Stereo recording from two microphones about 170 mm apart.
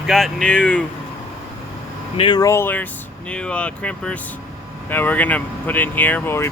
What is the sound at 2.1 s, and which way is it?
Speech, 25° left (ahead or behind).